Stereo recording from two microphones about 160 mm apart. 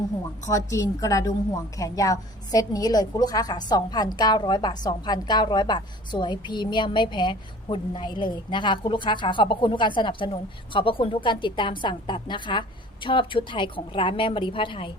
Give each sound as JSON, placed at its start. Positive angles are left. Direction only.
{"t": 0.4, "sound": "a woman's voice", "side_deg": 20}